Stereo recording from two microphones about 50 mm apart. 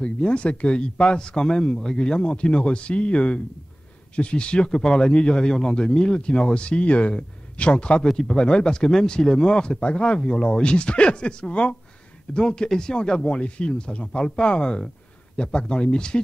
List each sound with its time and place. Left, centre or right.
0.0 s speech: left